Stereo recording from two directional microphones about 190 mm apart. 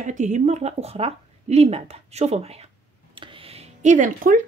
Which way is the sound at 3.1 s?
25° right (ahead or behind).